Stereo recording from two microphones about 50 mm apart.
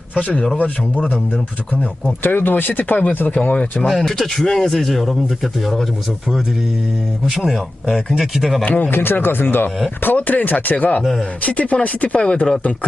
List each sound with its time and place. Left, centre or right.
0.1 s speech: left
2.2 s speech: left
3.8 s speech: centre
7.3 s speech: centre
8.6 s speech: left
8.9 s speech: left
10.2 s speech: left
11.0 s speech: centre
11.4 s speech: left